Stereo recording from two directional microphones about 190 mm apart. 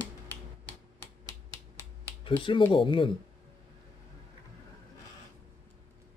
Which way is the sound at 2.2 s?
25° left (ahead or behind).